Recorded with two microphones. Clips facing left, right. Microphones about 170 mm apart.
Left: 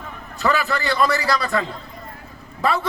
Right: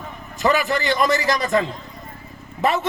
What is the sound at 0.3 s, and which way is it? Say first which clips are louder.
A man's voice: right 2 dB; 15° right (ahead or behind).